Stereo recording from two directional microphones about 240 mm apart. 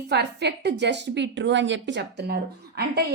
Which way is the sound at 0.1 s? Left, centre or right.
Right.